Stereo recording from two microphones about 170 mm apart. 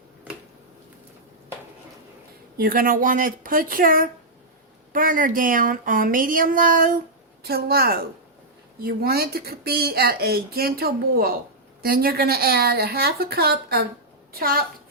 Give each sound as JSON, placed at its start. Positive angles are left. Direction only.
{"t": 2.6, "sound": "speech", "side_deg": -60}
{"t": 7.4, "sound": "speech", "side_deg": -65}